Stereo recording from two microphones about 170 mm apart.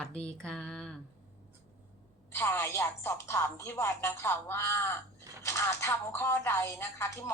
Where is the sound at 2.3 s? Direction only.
15° left (ahead or behind).